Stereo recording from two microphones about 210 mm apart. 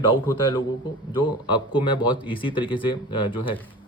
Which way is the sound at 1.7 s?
25° left (ahead or behind).